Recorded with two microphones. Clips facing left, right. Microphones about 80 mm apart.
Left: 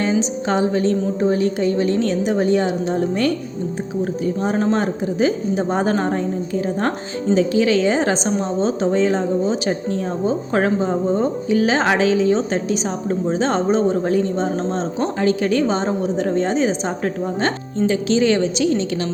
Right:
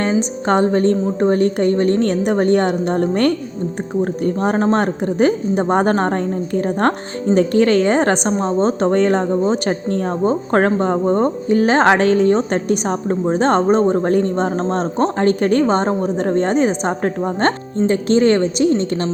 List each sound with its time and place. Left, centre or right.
0.2 s a woman's voice: right
4.5 s a woman's voice: right